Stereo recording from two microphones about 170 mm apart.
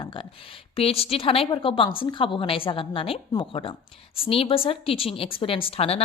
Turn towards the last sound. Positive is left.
turn(degrees=35)  # may be behind; listen again after turning